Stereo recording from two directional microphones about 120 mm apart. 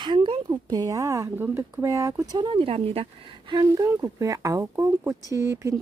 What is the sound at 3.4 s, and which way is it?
Speech, 30° right (ahead or behind).